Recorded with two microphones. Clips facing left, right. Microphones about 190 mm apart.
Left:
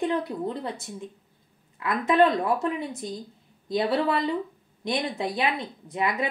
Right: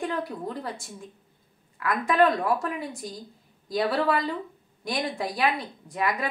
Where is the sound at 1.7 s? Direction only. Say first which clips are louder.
Left 1 dB; 20° left (ahead or behind).